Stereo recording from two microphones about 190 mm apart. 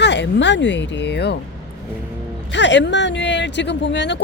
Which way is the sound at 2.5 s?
70° left (ahead or behind).